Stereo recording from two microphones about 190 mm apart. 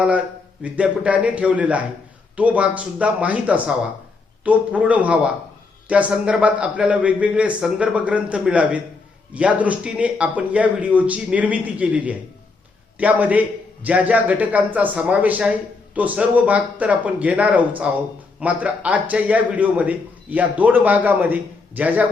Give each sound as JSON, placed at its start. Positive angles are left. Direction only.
{"t": 0.6, "sound": "speech", "side_deg": -5}